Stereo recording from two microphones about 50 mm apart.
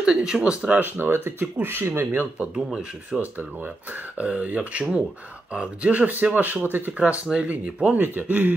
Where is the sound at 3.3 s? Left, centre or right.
Right.